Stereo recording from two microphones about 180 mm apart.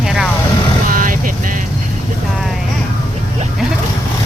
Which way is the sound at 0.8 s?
50° right (ahead or behind).